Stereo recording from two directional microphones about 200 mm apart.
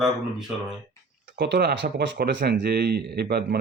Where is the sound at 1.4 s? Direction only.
55° right (ahead or behind).